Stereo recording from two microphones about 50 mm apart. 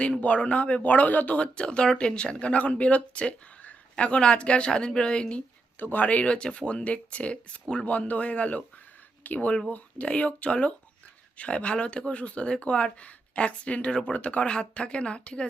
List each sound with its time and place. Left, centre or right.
0.0 s speech: left
1.4 s speech: centre
5.8 s speech: left